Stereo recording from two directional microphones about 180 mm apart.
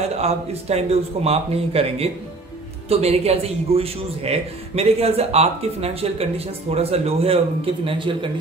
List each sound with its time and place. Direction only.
0.2 s a man's voice: 35° right (ahead or behind)